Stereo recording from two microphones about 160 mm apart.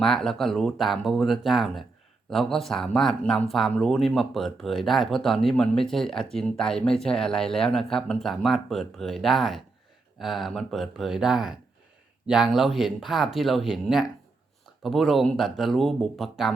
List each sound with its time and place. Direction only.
0.0 s speech: 5° left (ahead or behind)